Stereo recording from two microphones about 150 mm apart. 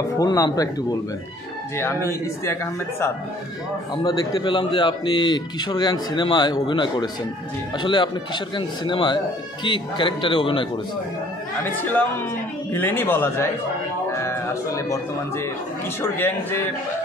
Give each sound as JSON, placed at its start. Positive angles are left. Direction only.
{"t": 0.2, "sound": "a man's voice", "side_deg": 25}
{"t": 1.8, "sound": "a man's voice", "side_deg": 15}
{"t": 11.7, "sound": "a man's voice", "side_deg": 15}